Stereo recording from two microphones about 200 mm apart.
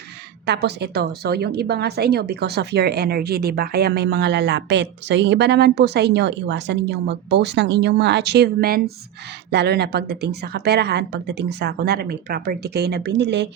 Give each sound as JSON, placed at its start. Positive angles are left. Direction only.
{"t": 0.4, "sound": "a woman's voice", "side_deg": -55}